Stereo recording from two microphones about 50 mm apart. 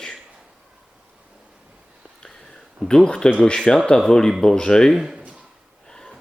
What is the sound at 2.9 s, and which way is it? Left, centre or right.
Speech, centre.